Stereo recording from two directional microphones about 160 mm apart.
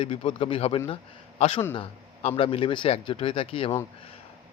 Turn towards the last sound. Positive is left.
turn(degrees=35)  # may be behind; listen again after turning